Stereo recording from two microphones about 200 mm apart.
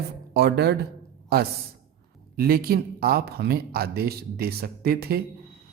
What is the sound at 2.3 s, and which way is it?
A woman's voice, 50° right (ahead or behind).